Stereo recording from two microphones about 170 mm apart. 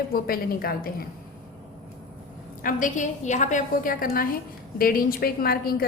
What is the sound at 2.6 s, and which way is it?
A woman's voice, 50° left (ahead or behind).